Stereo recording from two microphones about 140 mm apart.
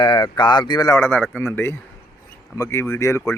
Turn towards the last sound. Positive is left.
turn(degrees=20)  # may be behind; listen again after turning